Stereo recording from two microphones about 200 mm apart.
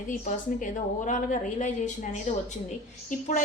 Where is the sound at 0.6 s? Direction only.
40° left (ahead or behind).